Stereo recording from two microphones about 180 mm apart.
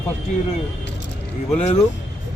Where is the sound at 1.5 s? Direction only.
35° left (ahead or behind).